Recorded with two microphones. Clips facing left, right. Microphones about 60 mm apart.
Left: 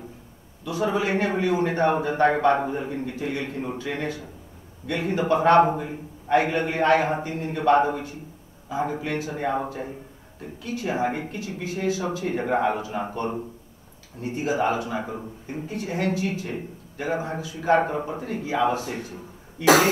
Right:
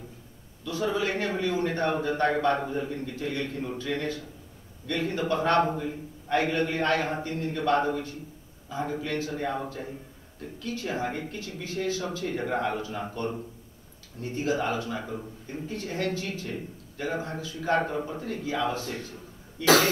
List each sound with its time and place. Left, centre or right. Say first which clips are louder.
0.7 s a man's voice: left 4 dB; centre
14.2 s a man's voice: left 4 dB; centre
18.1 s a man's voice: left 4 dB; centre